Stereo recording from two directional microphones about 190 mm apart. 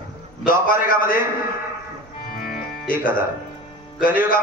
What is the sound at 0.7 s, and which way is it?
Speech, 45° left (ahead or behind).